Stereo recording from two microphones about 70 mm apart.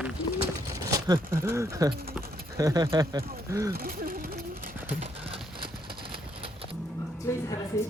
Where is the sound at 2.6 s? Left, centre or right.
Right.